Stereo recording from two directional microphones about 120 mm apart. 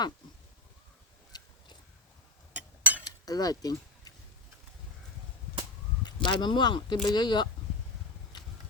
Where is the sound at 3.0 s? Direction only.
30° left (ahead or behind).